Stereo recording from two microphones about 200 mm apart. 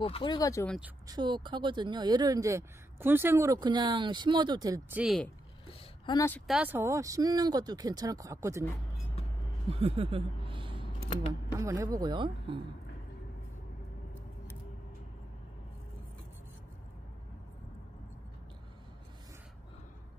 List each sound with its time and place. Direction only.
0.0 s speech: 25° left (ahead or behind)
0.7 s speech: 5° right (ahead or behind)
1.0 s speech: 20° right (ahead or behind)
5.0 s speech: centre (ahead or behind)
5.7 s a sound: 25° left (ahead or behind)
6.4 s speech: 5° right (ahead or behind)
9.7 s a sound: 30° right (ahead or behind)
11.5 s speech: 15° right (ahead or behind)